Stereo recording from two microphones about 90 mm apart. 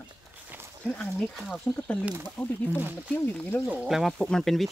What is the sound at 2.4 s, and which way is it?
Speech, 15° left (ahead or behind).